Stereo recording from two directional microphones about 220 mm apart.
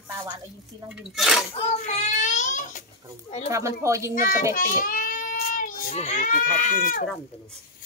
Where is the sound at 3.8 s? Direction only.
15° right (ahead or behind).